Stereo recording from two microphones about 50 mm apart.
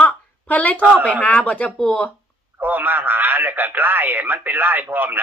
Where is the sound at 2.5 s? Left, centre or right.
Right.